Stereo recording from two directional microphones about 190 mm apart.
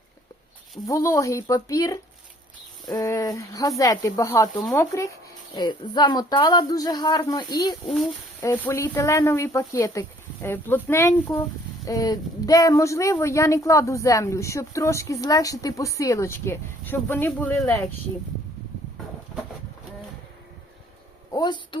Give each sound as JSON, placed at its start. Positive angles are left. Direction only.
{"t": 0.9, "sound": "speech", "side_deg": 15}
{"t": 21.3, "sound": "speech", "side_deg": 20}